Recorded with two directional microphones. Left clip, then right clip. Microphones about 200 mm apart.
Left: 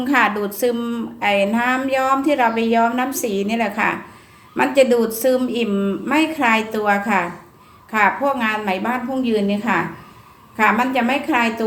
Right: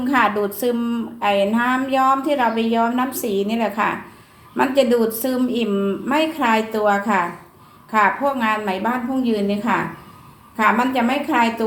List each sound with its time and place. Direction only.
0.0 s a woman's voice: 25° left (ahead or behind)